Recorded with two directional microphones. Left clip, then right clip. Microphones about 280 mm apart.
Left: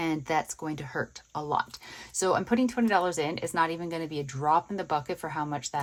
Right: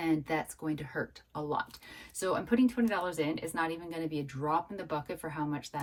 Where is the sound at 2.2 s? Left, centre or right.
Left.